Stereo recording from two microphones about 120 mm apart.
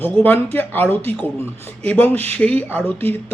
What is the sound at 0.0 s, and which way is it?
A man's voice, 15° left (ahead or behind).